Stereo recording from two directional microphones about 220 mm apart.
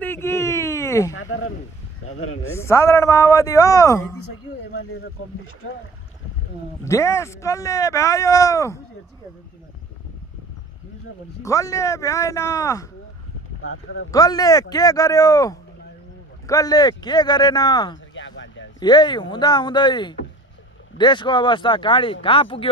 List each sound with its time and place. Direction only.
0.0 s a sound: 10° left (ahead or behind)
1.1 s a sound: 65° left (ahead or behind)
2.0 s a man's voice: 70° left (ahead or behind)
2.5 s speech: 10° left (ahead or behind)
4.7 s speech: 75° left (ahead or behind)
6.8 s speech: 10° left (ahead or behind)
11.4 s speech: 15° left (ahead or behind)
14.1 s speech: 15° left (ahead or behind)
18.1 s a sound: 55° left (ahead or behind)
18.8 s speech: 20° left (ahead or behind)